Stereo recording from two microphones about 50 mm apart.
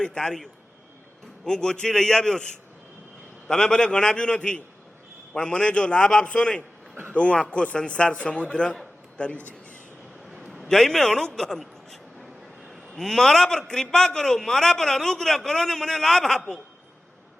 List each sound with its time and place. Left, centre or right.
0.0 s a man's voice: centre
1.5 s a man's voice: centre
3.5 s a man's voice: centre
10.3 s a sound: centre
10.7 s a man's voice: centre
13.0 s a man's voice: centre